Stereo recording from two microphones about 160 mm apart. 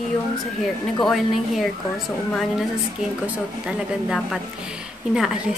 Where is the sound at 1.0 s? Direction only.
Centre (ahead or behind).